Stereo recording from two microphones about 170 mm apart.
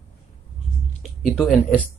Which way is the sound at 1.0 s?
Centre (ahead or behind).